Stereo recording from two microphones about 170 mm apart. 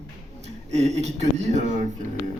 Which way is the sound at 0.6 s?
40° right (ahead or behind).